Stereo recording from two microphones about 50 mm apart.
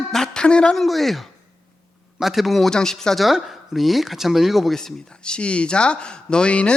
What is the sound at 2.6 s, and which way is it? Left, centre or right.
Speech, centre.